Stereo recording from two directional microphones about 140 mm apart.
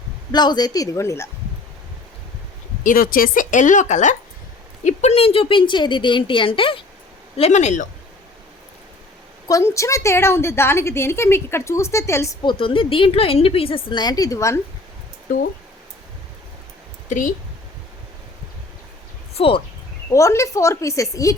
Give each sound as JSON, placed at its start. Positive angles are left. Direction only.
{"t": 0.3, "sound": "a woman's voice", "side_deg": 30}
{"t": 2.8, "sound": "a woman's voice", "side_deg": 90}
{"t": 7.3, "sound": "speech", "side_deg": 50}
{"t": 9.5, "sound": "a woman's voice", "side_deg": 20}
{"t": 12.5, "sound": "a woman's voice", "side_deg": 40}
{"t": 15.3, "sound": "speech", "side_deg": 80}
{"t": 17.1, "sound": "speech", "side_deg": 65}
{"t": 19.4, "sound": "a woman's voice", "side_deg": 40}
{"t": 20.1, "sound": "a woman's voice", "side_deg": 20}